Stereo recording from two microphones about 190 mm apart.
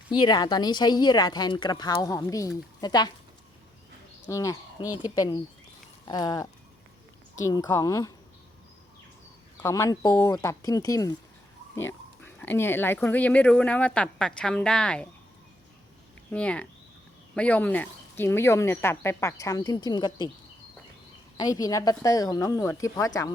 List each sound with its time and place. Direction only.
0.1 s speech: 20° left (ahead or behind)
4.3 s speech: 15° left (ahead or behind)
9.6 s speech: 15° left (ahead or behind)
12.2 s speech: 10° left (ahead or behind)
16.3 s speech: 5° left (ahead or behind); by 20.3 s 20° left (ahead or behind)
21.3 s speech: 20° left (ahead or behind)